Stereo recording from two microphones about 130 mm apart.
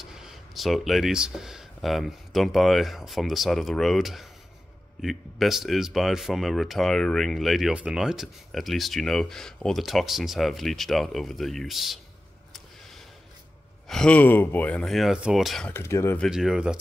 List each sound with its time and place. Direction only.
0.0 s speech: 5° right (ahead or behind)
13.8 s speech: 5° left (ahead or behind)
15.7 s speech: 20° left (ahead or behind)
16.3 s speech: 5° right (ahead or behind)